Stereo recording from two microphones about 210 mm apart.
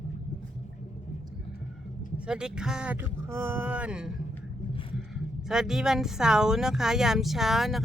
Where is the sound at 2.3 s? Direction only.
5° right (ahead or behind).